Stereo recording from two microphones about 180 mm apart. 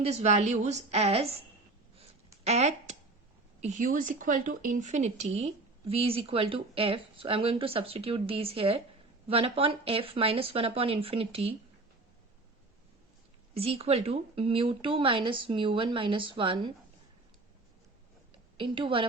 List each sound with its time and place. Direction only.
0.0 s speech: 40° right (ahead or behind)
2.4 s speech: 35° right (ahead or behind)
13.5 s speech: 35° right (ahead or behind)
18.5 s speech: 30° right (ahead or behind)